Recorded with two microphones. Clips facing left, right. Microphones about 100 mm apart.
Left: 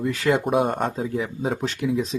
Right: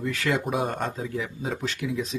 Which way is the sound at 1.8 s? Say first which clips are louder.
Left 8 dB; 25° left (ahead or behind).